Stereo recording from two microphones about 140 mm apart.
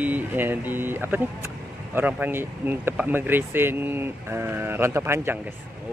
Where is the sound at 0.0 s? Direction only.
10° right (ahead or behind).